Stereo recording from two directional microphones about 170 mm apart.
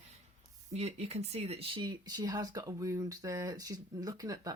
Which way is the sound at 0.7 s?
40° right (ahead or behind).